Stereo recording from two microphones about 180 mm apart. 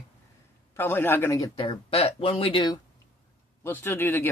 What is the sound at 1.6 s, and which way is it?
Speech, 30° left (ahead or behind).